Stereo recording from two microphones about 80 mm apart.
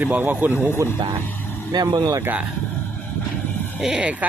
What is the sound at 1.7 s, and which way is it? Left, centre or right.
Speech, right.